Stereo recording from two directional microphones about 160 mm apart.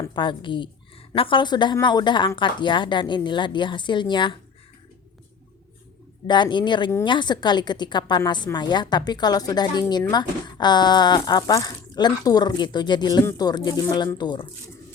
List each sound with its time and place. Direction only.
0.0 s a woman's voice: 30° left (ahead or behind)
6.2 s a woman's voice: 30° left (ahead or behind)